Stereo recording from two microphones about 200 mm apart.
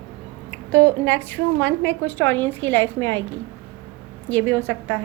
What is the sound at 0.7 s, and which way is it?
Speech, 65° right (ahead or behind).